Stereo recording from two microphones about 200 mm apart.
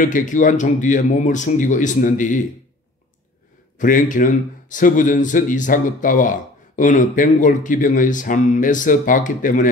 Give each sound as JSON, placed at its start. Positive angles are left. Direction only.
{"t": 0.0, "sound": "speech", "side_deg": 40}
{"t": 3.7, "sound": "speech", "side_deg": 40}